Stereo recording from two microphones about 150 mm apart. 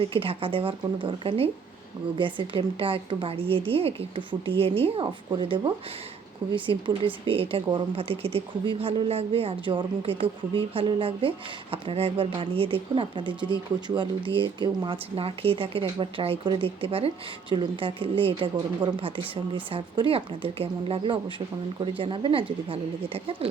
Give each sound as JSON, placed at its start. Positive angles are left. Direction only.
{"t": 0.0, "sound": "speech", "side_deg": -35}